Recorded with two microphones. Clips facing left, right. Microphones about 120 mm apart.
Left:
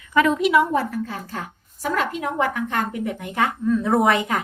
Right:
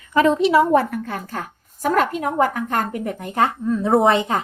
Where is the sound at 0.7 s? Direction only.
60° right (ahead or behind).